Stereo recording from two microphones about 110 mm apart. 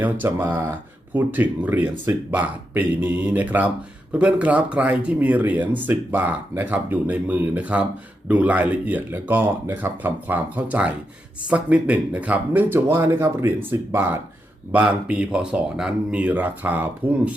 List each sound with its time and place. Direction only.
0.0 s speech: 20° right (ahead or behind)